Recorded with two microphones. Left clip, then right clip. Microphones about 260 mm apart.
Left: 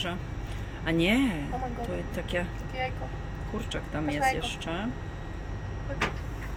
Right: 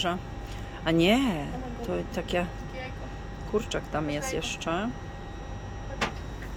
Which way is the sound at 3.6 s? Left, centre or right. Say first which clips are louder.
Right 5 dB; centre.